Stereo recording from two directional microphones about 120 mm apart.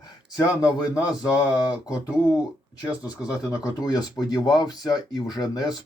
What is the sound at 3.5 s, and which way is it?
Speech, 35° left (ahead or behind).